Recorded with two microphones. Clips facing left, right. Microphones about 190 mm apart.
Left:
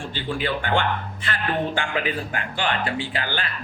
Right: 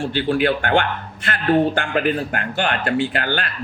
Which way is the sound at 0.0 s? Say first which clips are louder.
Right 9 dB; 65° right (ahead or behind).